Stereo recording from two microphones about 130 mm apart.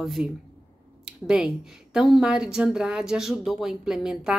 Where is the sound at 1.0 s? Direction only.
5° right (ahead or behind).